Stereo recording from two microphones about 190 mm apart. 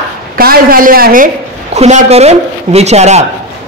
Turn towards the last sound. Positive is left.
turn(degrees=-35)  # may be behind; listen again after turning